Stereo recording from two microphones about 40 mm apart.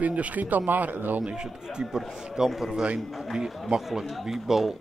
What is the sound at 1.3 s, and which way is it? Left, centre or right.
A man's voice, centre.